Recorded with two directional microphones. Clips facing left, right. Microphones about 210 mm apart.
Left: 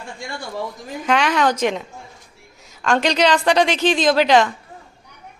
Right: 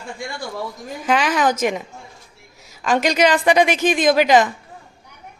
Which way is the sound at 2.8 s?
5° right (ahead or behind).